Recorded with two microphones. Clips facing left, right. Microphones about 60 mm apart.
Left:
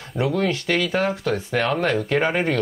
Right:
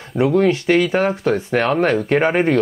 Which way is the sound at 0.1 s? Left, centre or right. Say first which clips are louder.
Right 7 dB; right.